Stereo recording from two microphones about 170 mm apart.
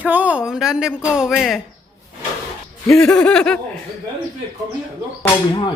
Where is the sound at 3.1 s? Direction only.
5° left (ahead or behind).